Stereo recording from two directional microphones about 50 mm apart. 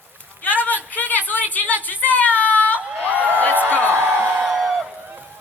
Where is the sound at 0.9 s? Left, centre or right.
Left.